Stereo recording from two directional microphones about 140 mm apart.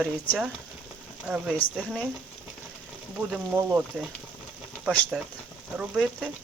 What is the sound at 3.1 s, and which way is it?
Speech, 10° right (ahead or behind).